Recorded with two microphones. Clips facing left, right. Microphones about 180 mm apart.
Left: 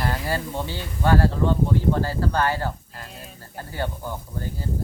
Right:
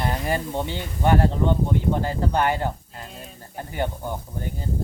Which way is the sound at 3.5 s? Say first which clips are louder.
Right 2 dB; 20° right (ahead or behind).